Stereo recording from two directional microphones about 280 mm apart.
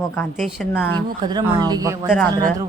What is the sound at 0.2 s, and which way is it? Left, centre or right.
Speech, centre.